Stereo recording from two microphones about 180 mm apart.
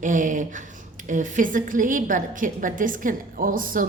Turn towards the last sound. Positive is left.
turn(degrees=-50)  # may be behind; listen again after turning